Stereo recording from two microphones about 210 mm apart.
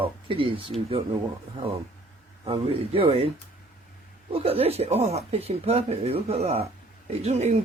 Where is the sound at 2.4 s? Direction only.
25° right (ahead or behind).